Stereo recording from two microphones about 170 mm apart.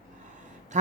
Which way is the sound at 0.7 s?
45° right (ahead or behind).